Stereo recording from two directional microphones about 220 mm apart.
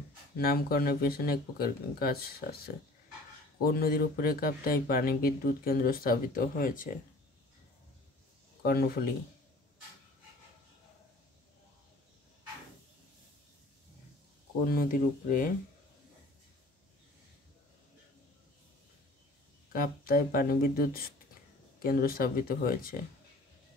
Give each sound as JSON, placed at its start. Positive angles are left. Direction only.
{"t": 0.4, "sound": "speech", "side_deg": 45}
{"t": 8.6, "sound": "speech", "side_deg": 45}
{"t": 14.7, "sound": "speech", "side_deg": 40}
{"t": 19.7, "sound": "speech", "side_deg": 40}